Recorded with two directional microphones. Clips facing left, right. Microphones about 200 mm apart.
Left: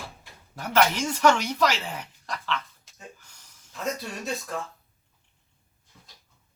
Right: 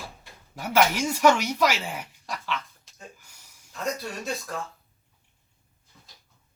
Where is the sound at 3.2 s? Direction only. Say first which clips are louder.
Even; 10° right (ahead or behind).